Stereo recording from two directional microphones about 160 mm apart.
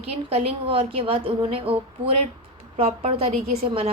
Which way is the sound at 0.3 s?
35° right (ahead or behind).